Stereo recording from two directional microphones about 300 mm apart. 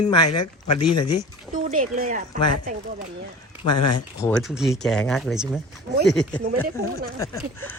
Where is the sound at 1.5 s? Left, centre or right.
Right.